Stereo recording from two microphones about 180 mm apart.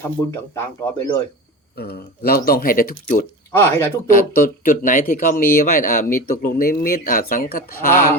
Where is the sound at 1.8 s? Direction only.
60° left (ahead or behind).